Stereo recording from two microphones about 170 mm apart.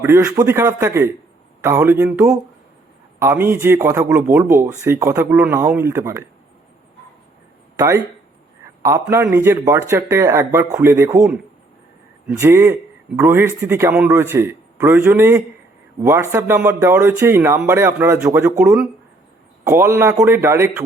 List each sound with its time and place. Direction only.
0.0 s speech: 15° right (ahead or behind)
7.8 s speech: 15° right (ahead or behind)
12.4 s speech: 15° right (ahead or behind)